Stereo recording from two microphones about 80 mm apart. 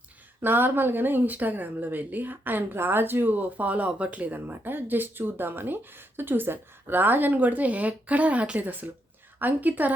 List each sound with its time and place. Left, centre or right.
0.4 s speech: right